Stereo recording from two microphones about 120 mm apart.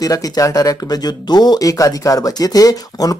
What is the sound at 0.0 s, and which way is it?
Speech, 30° left (ahead or behind).